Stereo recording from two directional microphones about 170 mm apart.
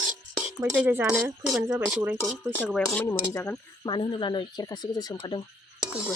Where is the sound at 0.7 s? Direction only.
10° right (ahead or behind).